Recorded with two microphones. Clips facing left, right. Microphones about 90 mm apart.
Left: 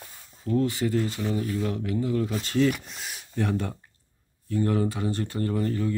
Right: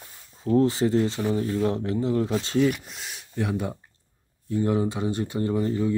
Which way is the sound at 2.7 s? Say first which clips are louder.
Right 1 dB; centre (ahead or behind).